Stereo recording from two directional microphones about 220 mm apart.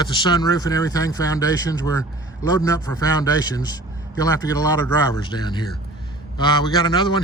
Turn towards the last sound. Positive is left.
turn(degrees=20)  # may be behind; listen again after turning